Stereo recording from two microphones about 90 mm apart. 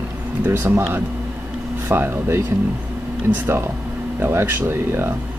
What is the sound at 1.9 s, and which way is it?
Speech, 25° right (ahead or behind).